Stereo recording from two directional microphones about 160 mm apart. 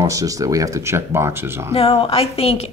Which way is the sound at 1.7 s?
40° left (ahead or behind).